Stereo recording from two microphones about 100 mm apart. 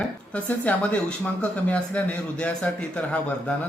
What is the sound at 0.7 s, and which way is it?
Speech, 15° left (ahead or behind).